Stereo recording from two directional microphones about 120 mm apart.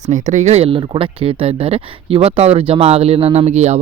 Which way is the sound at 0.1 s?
85° right.